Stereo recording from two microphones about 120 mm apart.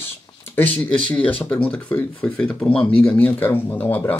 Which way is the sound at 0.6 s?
15° left (ahead or behind).